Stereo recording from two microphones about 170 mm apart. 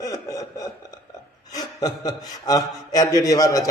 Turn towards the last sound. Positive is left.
turn(degrees=20)  # may be behind; listen again after turning